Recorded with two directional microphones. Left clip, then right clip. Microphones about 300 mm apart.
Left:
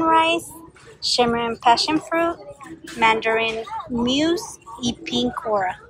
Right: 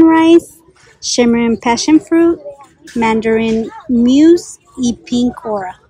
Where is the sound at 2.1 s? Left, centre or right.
Right.